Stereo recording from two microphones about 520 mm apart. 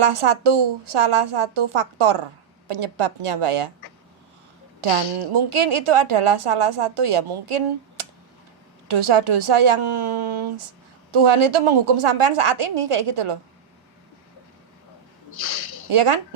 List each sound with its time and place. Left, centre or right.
0.0 s a woman's voice: right
4.8 s a woman's voice: right
15.3 s a sound: left
15.9 s a woman's voice: right